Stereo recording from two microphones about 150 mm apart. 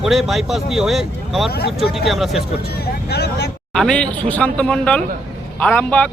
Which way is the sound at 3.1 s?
90° left.